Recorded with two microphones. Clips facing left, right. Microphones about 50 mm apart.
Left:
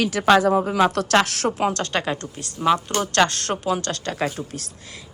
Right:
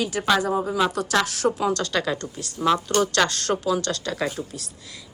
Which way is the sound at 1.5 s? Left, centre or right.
Left.